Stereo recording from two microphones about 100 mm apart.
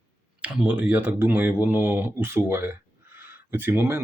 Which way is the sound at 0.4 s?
15° right (ahead or behind).